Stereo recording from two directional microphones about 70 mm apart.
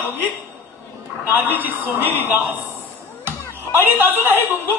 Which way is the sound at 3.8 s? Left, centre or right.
Right.